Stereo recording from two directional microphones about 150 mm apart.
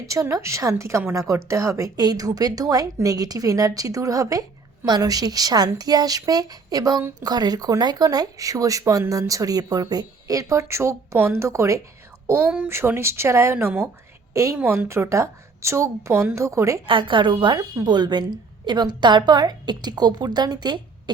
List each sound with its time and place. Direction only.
0.1 s a woman's voice: 20° right (ahead or behind)
16.8 s a woman's voice: 35° right (ahead or behind)